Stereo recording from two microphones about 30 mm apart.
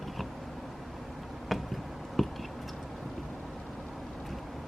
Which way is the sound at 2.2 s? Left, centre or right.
Centre.